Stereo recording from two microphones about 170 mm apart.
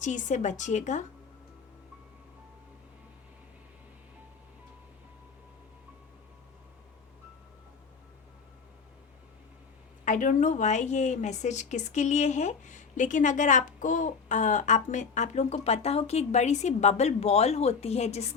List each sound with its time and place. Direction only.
0.0 s a woman's voice: 45° left (ahead or behind)
10.0 s a woman's voice: 50° left (ahead or behind)